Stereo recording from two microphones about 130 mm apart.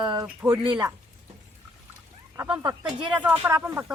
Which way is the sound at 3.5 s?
25° right (ahead or behind).